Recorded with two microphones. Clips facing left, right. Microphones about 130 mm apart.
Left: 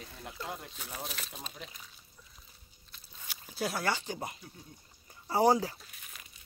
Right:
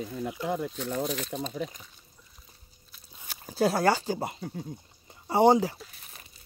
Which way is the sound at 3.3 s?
40° right (ahead or behind).